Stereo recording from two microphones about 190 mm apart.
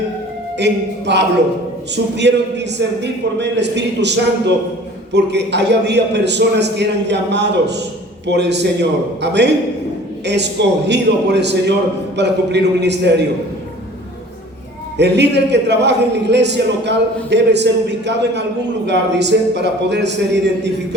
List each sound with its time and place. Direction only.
0.6 s a man's voice: 65° right (ahead or behind)
14.9 s a man's voice: 65° right (ahead or behind)